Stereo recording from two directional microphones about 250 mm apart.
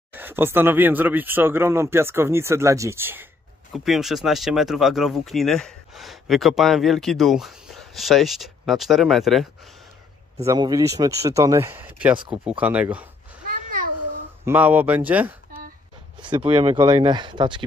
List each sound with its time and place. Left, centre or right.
0.1 s speech: centre
10.4 s speech: centre
14.4 s speech: centre
16.2 s speech: centre